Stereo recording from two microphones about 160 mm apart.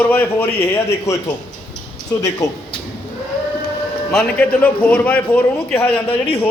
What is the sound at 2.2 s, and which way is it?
Speech, 20° left (ahead or behind).